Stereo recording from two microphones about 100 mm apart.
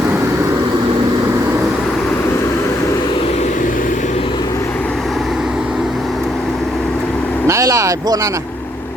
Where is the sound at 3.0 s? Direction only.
75° left (ahead or behind).